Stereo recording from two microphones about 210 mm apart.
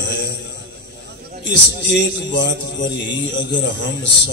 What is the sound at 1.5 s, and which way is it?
A man's voice, 55° left (ahead or behind).